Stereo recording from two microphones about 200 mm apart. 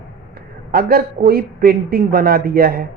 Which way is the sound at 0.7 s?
50° right (ahead or behind).